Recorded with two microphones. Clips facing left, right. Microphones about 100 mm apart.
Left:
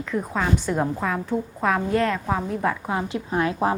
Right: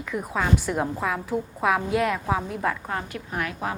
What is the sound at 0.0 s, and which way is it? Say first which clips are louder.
A woman's voice: left 2 dB; 5° right (ahead or behind).